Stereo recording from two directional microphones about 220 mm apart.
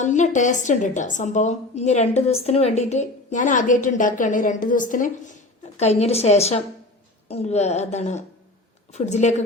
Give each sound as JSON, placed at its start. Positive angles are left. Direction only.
{"t": 0.0, "sound": "a woman's voice", "side_deg": 35}